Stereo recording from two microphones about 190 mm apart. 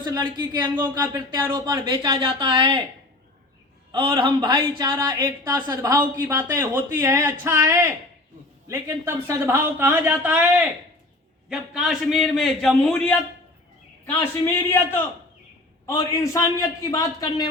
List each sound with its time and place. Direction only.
0.0 s speech: 25° right (ahead or behind)
3.9 s a man's voice: 25° right (ahead or behind); by 13.1 s 5° left (ahead or behind)
14.2 s a man's voice: 10° left (ahead or behind)